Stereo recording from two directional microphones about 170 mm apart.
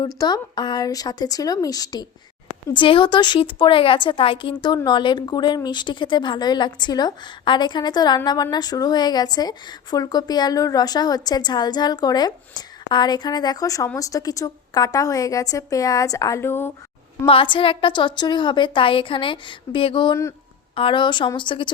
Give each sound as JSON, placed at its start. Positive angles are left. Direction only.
{"t": 0.2, "sound": "a woman's voice", "side_deg": 20}
{"t": 17.2, "sound": "a woman's voice", "side_deg": 30}